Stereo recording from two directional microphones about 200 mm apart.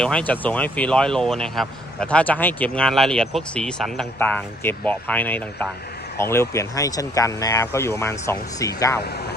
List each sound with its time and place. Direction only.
0.0 s speech: 5° left (ahead or behind)